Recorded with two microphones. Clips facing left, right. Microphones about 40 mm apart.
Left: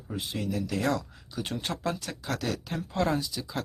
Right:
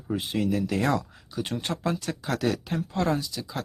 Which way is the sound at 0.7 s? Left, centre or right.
Centre.